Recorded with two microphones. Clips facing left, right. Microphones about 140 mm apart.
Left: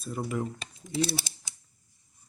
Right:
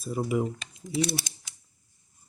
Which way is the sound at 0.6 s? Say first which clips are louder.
Right 1 dB; 30° left (ahead or behind).